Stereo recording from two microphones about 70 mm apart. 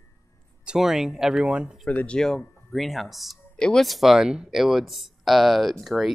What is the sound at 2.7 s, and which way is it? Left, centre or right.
Speech, centre.